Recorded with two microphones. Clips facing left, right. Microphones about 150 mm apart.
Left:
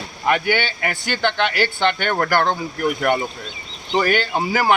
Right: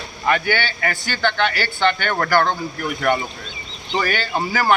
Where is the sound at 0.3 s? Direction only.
15° left (ahead or behind).